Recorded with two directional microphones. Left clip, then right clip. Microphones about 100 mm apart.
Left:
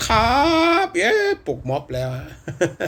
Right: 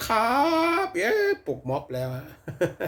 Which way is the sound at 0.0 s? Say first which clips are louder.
Left 5 dB; 25° right (ahead or behind).